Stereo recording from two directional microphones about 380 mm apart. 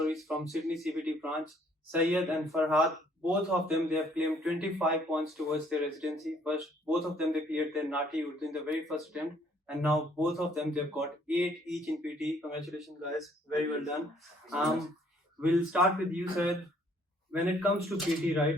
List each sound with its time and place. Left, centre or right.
0.0 s speech: centre
14.5 s speech: centre
17.6 s speech: centre